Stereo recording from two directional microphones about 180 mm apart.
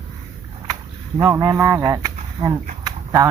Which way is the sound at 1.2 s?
15° right (ahead or behind).